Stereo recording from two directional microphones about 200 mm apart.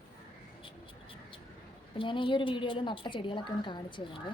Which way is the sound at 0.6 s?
25° left (ahead or behind).